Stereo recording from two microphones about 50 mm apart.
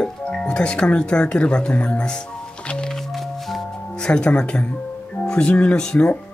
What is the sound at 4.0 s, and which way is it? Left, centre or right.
Speech, centre.